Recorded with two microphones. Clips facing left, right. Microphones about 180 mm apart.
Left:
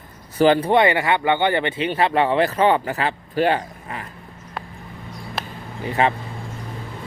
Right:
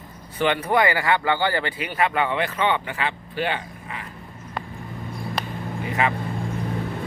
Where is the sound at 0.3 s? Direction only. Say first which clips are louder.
Left 6 dB; 35° left (ahead or behind).